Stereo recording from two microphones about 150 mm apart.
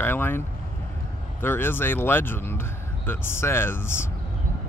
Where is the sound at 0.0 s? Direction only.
15° left (ahead or behind).